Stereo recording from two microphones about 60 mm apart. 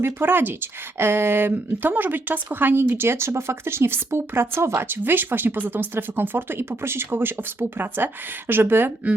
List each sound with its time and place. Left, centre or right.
0.0 s speech: right